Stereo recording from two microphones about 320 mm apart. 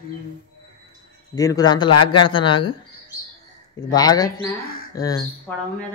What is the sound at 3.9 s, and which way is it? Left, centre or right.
Speech, centre.